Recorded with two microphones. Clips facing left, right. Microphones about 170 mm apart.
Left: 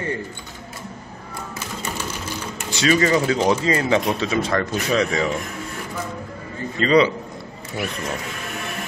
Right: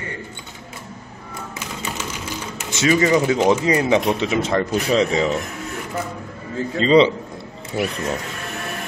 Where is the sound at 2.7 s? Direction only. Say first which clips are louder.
Right 1 dB; 20° right (ahead or behind).